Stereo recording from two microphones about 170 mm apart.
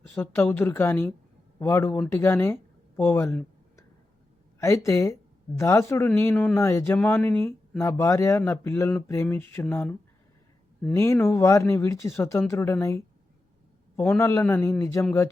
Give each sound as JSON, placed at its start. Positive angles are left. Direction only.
{"t": 0.1, "sound": "speech", "side_deg": 10}